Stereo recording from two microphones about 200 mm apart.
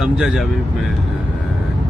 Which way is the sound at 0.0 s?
Centre (ahead or behind).